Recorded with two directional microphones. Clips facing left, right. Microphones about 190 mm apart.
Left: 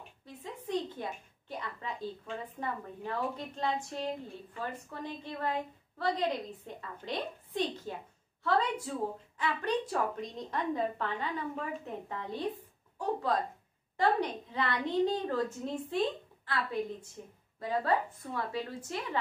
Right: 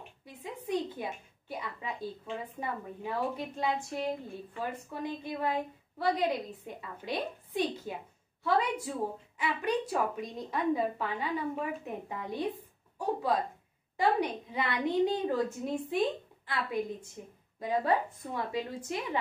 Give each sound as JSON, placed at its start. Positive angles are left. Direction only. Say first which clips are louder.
{"t": 0.2, "sound": "a woman's voice", "louder": "right 2 dB", "side_deg": -10}